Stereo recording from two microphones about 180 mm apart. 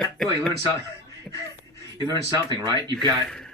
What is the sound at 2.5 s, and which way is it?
Speech, 20° right (ahead or behind).